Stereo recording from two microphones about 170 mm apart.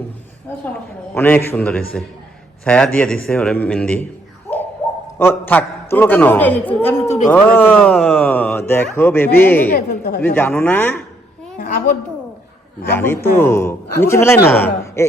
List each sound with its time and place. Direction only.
1.1 s speech: 15° left (ahead or behind)
5.2 s speech: 10° left (ahead or behind)
7.0 s speech: 40° left (ahead or behind)
7.3 s speech: 10° left (ahead or behind)
9.6 s a man's voice: 70° left (ahead or behind)
10.2 s speech: 10° left (ahead or behind)
11.5 s a child's voice: 45° left (ahead or behind)
12.9 s speech: 15° left (ahead or behind)